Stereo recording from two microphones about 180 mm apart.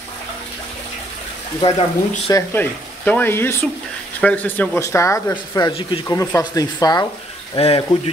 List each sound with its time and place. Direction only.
1.6 s speech: 30° left (ahead or behind)
2.5 s speech: 10° left (ahead or behind)
7.5 s speech: 30° left (ahead or behind)